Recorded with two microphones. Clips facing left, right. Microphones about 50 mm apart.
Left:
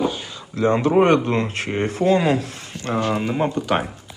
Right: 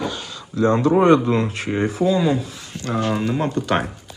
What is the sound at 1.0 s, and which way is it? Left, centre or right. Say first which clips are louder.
Speech: right 2 dB; left.